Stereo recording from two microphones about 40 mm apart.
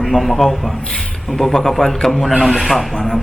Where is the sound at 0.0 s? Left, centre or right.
Centre.